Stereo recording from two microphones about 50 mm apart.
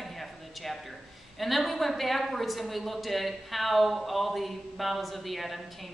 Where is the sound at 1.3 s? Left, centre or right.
Centre.